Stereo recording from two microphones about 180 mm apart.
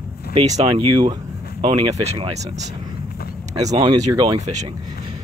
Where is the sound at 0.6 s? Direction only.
25° right (ahead or behind).